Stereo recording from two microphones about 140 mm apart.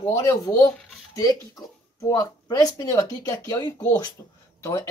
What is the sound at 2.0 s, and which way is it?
Speech, 25° left (ahead or behind).